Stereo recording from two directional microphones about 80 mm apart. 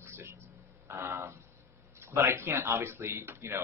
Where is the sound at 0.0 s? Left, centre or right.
Right.